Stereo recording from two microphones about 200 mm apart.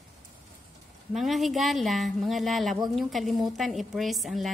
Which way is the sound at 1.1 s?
Centre (ahead or behind).